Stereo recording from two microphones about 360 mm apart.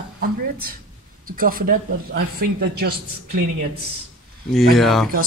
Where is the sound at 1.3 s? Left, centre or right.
Right.